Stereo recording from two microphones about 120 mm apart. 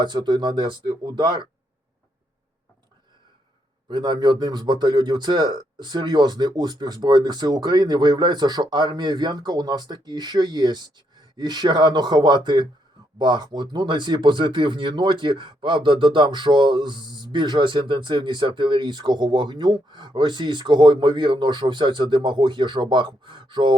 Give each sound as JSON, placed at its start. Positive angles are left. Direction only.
{"t": 0.0, "sound": "speech", "side_deg": -40}
{"t": 3.8, "sound": "speech", "side_deg": -40}